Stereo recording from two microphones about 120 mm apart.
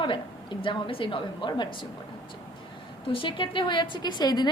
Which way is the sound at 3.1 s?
45° left (ahead or behind).